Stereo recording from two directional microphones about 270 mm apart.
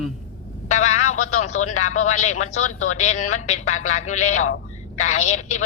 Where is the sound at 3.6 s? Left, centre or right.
Left.